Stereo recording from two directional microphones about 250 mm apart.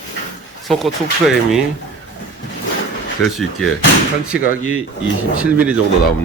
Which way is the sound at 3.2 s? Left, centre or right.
Centre.